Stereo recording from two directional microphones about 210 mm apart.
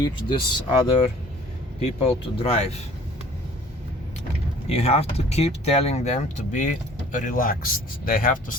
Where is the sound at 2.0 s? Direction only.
30° left (ahead or behind).